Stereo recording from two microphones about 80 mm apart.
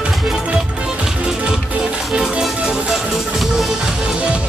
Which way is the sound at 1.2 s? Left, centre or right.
Centre.